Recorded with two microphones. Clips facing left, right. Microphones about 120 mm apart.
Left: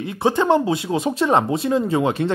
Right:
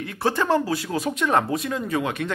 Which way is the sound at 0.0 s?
25° left (ahead or behind).